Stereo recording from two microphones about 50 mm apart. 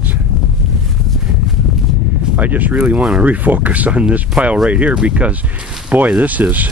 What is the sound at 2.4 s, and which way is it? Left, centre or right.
Speech, right.